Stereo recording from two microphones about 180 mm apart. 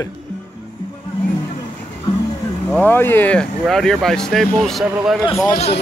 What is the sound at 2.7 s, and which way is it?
Speech, 10° left (ahead or behind).